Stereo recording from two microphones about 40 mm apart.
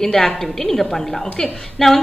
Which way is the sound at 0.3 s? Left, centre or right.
Centre.